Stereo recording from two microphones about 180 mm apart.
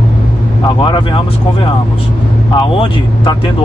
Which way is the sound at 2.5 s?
25° left (ahead or behind).